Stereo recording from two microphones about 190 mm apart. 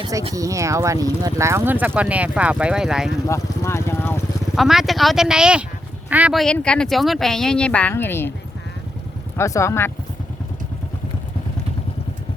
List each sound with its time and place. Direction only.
0.0 s speech: 15° right (ahead or behind)
3.2 s vehicle: 15° left (ahead or behind)
4.5 s speech: centre (ahead or behind)
9.4 s speech: 15° left (ahead or behind)